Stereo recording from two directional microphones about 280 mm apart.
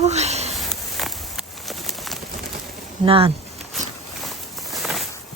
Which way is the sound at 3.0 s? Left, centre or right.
Centre.